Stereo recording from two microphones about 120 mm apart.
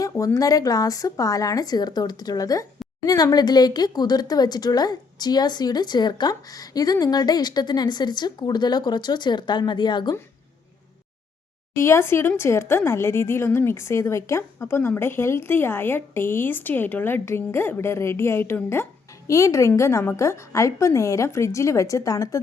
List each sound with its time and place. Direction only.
0.3 s speech: 30° left (ahead or behind)
11.7 s a woman's voice: 20° left (ahead or behind)